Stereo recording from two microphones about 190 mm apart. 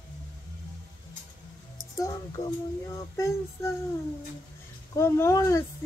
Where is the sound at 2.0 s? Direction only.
15° left (ahead or behind).